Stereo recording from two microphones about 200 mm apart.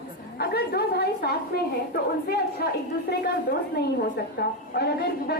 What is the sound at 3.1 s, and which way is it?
Speech, 55° left (ahead or behind).